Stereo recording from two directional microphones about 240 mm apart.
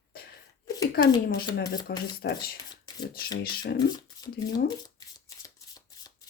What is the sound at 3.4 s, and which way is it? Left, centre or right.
Speech, left.